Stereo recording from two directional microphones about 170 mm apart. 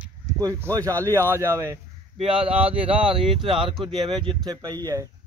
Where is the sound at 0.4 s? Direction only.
20° right (ahead or behind).